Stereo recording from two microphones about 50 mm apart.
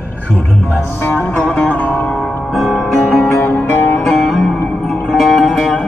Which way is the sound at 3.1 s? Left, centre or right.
Left.